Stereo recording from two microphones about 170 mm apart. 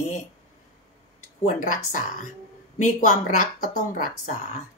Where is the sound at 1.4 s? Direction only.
50° left (ahead or behind).